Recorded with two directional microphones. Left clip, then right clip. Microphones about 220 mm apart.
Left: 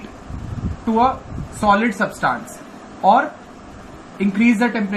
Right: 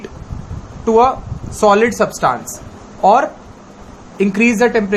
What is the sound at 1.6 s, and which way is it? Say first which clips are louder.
Speech: right 5 dB; 50° right (ahead or behind).